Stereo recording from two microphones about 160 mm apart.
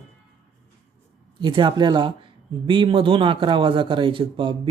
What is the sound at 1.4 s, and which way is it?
Speech, 30° right (ahead or behind).